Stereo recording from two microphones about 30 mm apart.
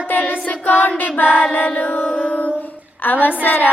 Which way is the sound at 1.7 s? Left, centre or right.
Left.